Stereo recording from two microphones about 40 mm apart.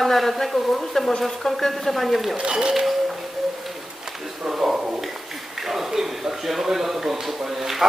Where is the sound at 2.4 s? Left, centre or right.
Right.